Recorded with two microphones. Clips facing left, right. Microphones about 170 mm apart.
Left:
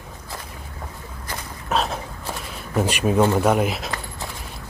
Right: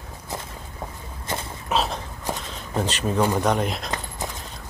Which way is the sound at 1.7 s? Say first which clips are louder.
Left 1 dB; centre (ahead or behind).